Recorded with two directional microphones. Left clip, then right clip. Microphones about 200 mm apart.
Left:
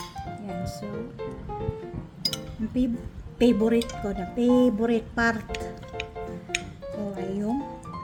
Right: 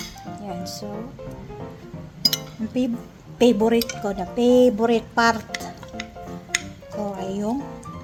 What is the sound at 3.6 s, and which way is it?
Speech, 20° left (ahead or behind).